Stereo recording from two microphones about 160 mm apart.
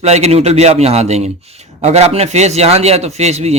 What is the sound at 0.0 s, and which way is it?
A man's voice, 40° right (ahead or behind).